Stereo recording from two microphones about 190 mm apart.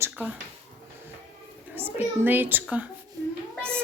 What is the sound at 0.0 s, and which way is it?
Speech, 10° right (ahead or behind).